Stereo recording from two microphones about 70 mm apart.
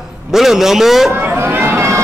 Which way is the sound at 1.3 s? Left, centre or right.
Right.